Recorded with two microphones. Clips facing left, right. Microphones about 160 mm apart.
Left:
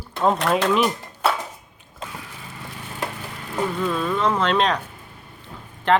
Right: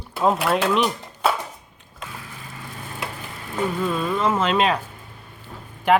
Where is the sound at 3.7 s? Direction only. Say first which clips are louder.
Left 1 dB; 5° right (ahead or behind).